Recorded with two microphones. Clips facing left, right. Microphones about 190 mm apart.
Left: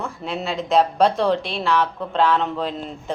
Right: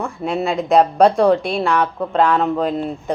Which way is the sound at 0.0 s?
55° right (ahead or behind).